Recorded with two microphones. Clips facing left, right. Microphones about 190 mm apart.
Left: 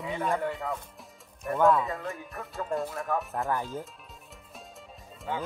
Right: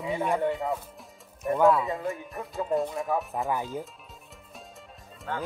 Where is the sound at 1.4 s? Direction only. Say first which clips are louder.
Right 2 dB; 5° right (ahead or behind).